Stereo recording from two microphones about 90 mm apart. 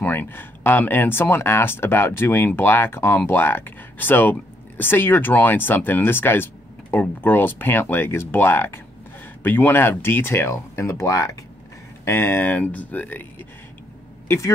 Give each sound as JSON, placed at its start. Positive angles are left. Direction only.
{"t": 0.0, "sound": "speech", "side_deg": 20}
{"t": 12.0, "sound": "speech", "side_deg": 25}